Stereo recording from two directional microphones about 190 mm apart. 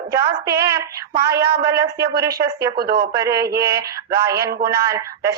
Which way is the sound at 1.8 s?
60° right (ahead or behind).